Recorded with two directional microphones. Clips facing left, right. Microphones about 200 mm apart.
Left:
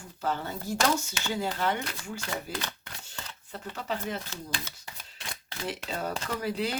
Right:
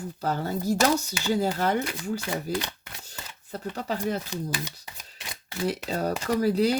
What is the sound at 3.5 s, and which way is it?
Speech, 40° right (ahead or behind).